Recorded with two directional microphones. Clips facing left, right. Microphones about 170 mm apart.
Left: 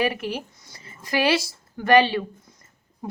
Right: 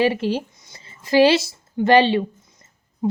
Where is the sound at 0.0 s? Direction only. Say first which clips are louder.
Right 6 dB; 30° right (ahead or behind).